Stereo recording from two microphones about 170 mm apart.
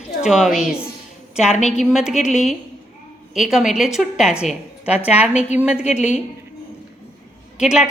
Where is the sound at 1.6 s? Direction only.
40° left (ahead or behind).